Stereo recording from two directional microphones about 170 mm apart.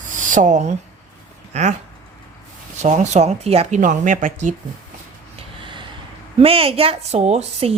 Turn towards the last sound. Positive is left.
turn(degrees=-40)  # may be behind; listen again after turning